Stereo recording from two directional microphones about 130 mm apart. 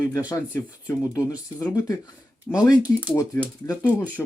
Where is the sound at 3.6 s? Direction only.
20° left (ahead or behind).